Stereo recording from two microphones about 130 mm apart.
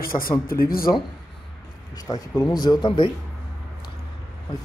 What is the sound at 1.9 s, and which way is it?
Speech, 30° left (ahead or behind).